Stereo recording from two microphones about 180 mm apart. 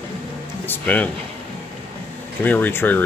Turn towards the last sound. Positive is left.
turn(degrees=10)  # may be behind; listen again after turning